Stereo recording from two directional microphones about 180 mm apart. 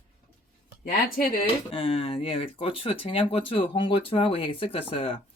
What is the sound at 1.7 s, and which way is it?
Speech, 30° left (ahead or behind).